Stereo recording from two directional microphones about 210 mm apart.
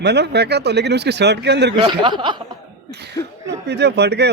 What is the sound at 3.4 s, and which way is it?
Speech, 55° right (ahead or behind).